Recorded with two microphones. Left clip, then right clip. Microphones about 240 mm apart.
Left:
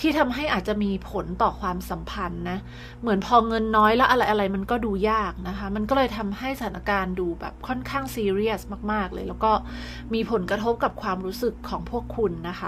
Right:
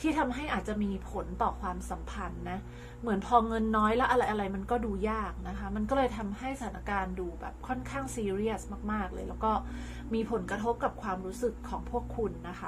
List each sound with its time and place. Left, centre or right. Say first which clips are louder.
0.0 s a woman's voice: left 8 dB; left